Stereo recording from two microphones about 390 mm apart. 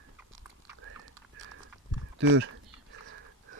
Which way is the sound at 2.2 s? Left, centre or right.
Right.